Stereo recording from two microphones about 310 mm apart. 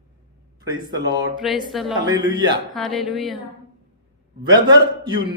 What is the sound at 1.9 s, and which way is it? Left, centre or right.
Speech, centre.